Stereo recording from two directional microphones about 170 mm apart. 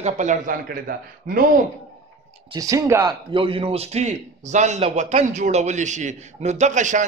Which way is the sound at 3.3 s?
30° right (ahead or behind).